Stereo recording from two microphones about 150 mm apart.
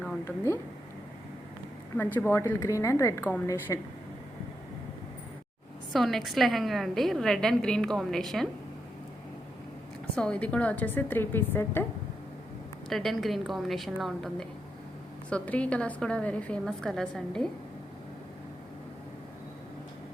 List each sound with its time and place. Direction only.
0.3 s a woman's voice: 15° left (ahead or behind)
2.0 s a woman's voice: 10° left (ahead or behind)
5.9 s a woman's voice: centre (ahead or behind)
10.2 s a woman's voice: 5° left (ahead or behind)
12.9 s a woman's voice: centre (ahead or behind)